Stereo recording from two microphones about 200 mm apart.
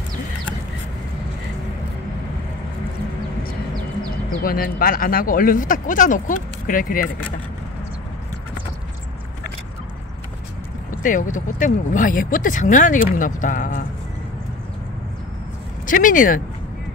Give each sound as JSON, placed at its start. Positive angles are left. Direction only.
{"t": 4.4, "sound": "speech", "side_deg": 45}
{"t": 10.9, "sound": "speech", "side_deg": 40}
{"t": 15.9, "sound": "speech", "side_deg": 40}